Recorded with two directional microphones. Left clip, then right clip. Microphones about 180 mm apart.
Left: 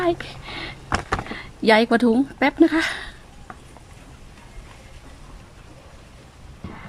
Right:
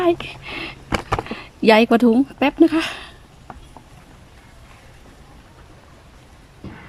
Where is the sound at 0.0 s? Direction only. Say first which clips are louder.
Right 4 dB; 10° right (ahead or behind).